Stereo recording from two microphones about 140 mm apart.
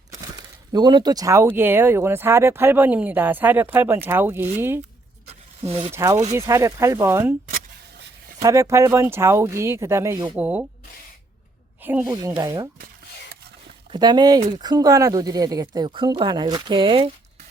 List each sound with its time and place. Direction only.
0.7 s speech: 30° right (ahead or behind); by 4.8 s 15° right (ahead or behind)
5.3 s a sound: 45° right (ahead or behind)
5.9 s speech: 20° right (ahead or behind)
8.4 s speech: 20° right (ahead or behind)
10.3 s speech: 10° right (ahead or behind)
11.8 s speech: 15° right (ahead or behind)
12.0 s speech: 30° right (ahead or behind)
13.9 s speech: 30° right (ahead or behind)